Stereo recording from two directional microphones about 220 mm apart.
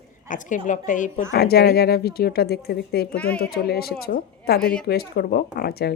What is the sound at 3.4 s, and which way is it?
A woman's voice, 45° left (ahead or behind).